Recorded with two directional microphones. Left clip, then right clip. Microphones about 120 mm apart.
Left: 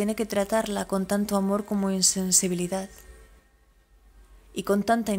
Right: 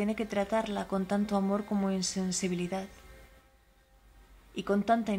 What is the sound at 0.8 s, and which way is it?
A woman's voice, 25° left (ahead or behind).